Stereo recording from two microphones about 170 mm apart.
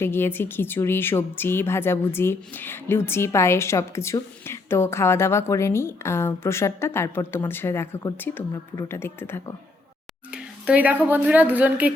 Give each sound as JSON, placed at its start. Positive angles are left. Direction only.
{"t": 0.0, "sound": "a woman's voice", "side_deg": 15}
{"t": 10.3, "sound": "a woman's voice", "side_deg": -10}